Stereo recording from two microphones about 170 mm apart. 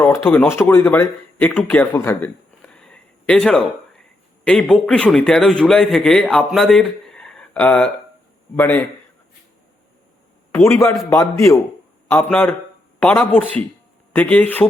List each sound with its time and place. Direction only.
0.0 s a man's voice: 10° left (ahead or behind)
10.5 s a man's voice: 15° left (ahead or behind)